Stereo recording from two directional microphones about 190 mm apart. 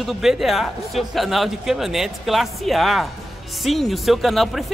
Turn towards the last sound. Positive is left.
turn(degrees=0)  # may be behind; listen again after turning